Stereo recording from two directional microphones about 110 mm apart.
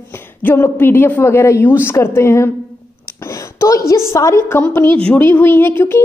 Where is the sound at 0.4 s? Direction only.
20° left (ahead or behind).